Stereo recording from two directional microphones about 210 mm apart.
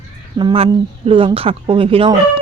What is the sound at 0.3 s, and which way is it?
Speech, 25° right (ahead or behind).